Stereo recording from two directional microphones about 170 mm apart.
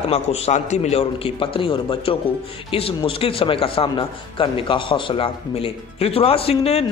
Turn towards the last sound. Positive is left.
turn(degrees=35)  # may be behind; listen again after turning